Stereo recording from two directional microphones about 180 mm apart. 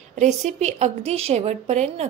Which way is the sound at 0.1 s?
40° right (ahead or behind).